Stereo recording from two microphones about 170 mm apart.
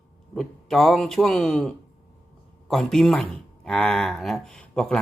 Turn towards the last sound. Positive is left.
turn(degrees=5)  # may be behind; listen again after turning